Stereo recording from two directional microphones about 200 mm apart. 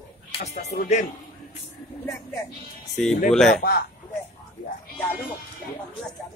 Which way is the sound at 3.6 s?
50° left (ahead or behind).